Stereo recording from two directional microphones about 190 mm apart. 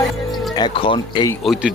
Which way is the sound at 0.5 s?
25° left (ahead or behind).